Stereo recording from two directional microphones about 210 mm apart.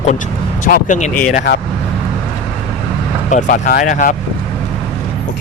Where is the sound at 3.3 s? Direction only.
40° left (ahead or behind).